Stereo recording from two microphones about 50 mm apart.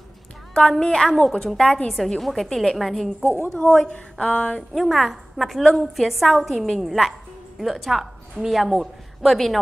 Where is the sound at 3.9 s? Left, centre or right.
Centre.